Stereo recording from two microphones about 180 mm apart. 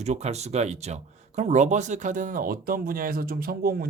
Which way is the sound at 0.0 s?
40° right (ahead or behind).